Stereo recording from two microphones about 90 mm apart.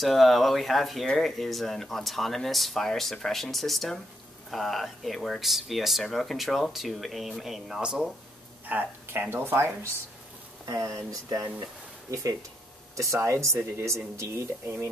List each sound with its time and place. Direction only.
0.0 s speech: centre (ahead or behind)
8.6 s speech: 20° right (ahead or behind)
11.1 s speech: 40° right (ahead or behind)